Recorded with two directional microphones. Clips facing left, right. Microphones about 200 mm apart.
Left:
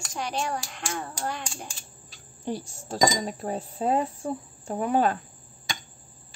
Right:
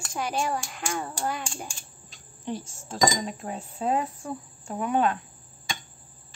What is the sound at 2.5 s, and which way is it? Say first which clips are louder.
Speech: left 2 dB; 40° left (ahead or behind).